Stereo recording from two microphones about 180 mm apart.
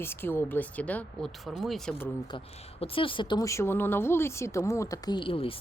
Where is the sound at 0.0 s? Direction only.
10° left (ahead or behind).